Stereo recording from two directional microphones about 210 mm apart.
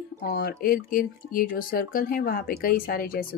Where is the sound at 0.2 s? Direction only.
45° left (ahead or behind).